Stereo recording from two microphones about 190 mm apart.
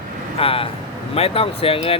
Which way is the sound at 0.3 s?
30° left (ahead or behind).